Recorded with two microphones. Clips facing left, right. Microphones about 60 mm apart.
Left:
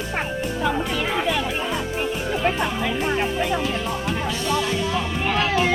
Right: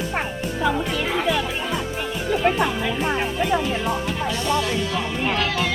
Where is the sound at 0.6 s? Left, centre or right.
Centre.